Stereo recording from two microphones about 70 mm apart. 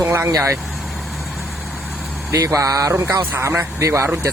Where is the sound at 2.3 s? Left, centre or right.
Right.